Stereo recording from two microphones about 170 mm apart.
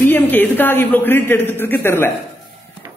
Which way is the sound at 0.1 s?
10° left (ahead or behind).